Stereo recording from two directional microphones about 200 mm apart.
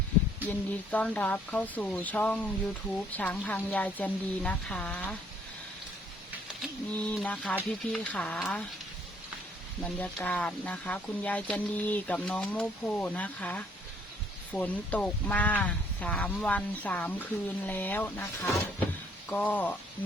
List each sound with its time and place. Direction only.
0.4 s speech: 10° left (ahead or behind)
6.6 s speech: centre (ahead or behind)
9.8 s speech: 5° left (ahead or behind)
20.0 s a sound: 10° left (ahead or behind)